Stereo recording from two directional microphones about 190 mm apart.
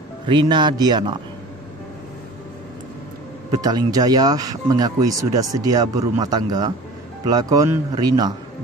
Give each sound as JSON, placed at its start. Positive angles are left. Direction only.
{"t": 0.3, "sound": "speech", "side_deg": -25}
{"t": 3.5, "sound": "speech", "side_deg": -20}